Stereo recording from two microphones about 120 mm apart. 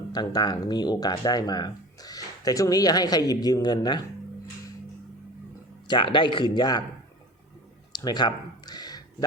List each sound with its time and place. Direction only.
0.1 s speech: 35° left (ahead or behind)
5.9 s speech: 40° left (ahead or behind)
7.9 s a sound: 35° left (ahead or behind)